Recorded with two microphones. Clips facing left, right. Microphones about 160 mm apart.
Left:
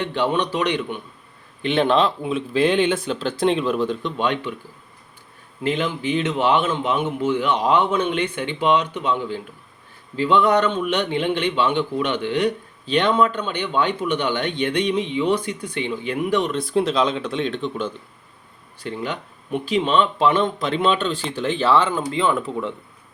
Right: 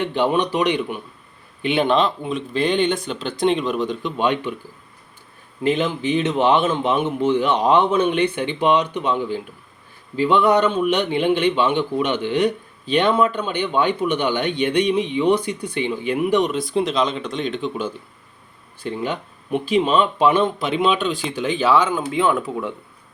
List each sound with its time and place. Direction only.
0.0 s a man's voice: 15° right (ahead or behind); by 4.1 s centre (ahead or behind)
4.2 s a man's voice: 15° right (ahead or behind)
5.6 s a man's voice: 20° right (ahead or behind)
7.2 s a man's voice: 25° right (ahead or behind)
16.5 s speech: centre (ahead or behind)
18.8 s a man's voice: 15° right (ahead or behind)